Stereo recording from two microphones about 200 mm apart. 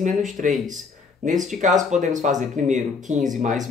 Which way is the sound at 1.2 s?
40° right (ahead or behind).